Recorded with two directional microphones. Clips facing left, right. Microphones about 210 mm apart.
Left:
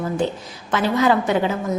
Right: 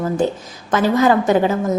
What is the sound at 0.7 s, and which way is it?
Speech, 45° right (ahead or behind).